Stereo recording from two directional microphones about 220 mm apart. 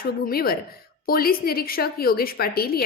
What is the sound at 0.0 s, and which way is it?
A woman's voice, 45° left (ahead or behind).